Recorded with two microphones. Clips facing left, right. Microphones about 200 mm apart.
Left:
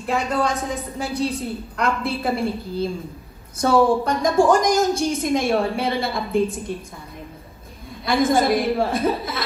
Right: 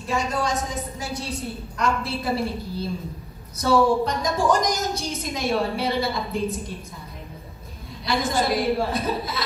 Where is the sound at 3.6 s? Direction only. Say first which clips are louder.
Left 2 dB; 50° left (ahead or behind).